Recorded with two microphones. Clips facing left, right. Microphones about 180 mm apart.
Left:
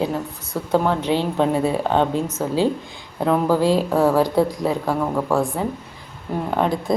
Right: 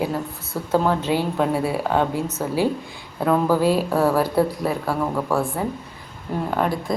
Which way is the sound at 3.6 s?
10° right (ahead or behind).